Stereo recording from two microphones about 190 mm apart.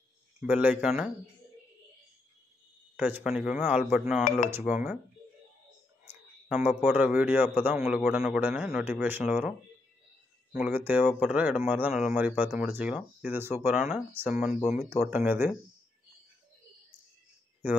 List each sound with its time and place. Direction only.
0.4 s a man's voice: 10° right (ahead or behind)
3.0 s speech: 10° right (ahead or behind)
6.0 s a man's voice: 10° right (ahead or behind)
10.5 s a man's voice: 10° right (ahead or behind)